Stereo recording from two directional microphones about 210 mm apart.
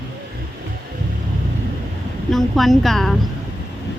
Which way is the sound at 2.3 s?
Centre (ahead or behind).